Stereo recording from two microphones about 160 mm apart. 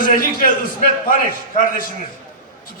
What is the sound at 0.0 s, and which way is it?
A man's voice, 60° left (ahead or behind).